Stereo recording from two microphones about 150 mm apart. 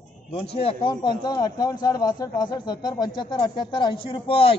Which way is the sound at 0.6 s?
30° left (ahead or behind).